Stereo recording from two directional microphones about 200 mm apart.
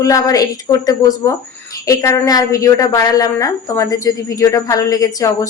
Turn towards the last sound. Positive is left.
turn(degrees=15)  # may be behind; listen again after turning